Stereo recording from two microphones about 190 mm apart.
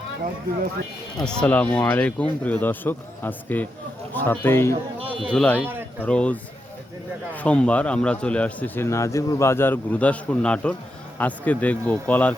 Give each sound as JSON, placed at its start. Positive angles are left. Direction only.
{"t": 1.2, "sound": "a man's voice", "side_deg": 5}